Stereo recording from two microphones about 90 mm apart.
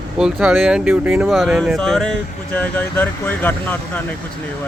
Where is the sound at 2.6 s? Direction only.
20° left (ahead or behind).